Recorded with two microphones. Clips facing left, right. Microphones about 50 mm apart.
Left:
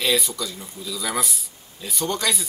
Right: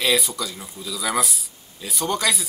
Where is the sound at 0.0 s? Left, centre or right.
Centre.